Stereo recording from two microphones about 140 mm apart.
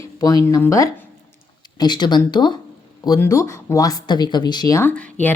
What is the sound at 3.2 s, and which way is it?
Speech, 20° left (ahead or behind).